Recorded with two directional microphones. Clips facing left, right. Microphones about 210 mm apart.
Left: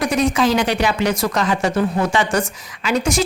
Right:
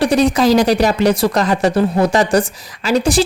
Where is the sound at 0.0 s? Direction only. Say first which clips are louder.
Right 4 dB; 35° right (ahead or behind).